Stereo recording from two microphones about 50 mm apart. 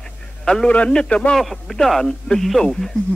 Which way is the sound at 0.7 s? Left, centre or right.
Left.